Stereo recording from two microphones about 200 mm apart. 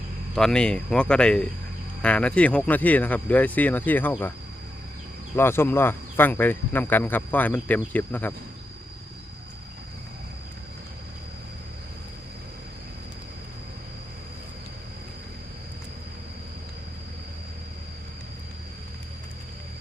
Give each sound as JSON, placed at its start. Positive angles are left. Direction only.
{"t": 0.3, "sound": "speech", "side_deg": 5}
{"t": 5.4, "sound": "speech", "side_deg": 10}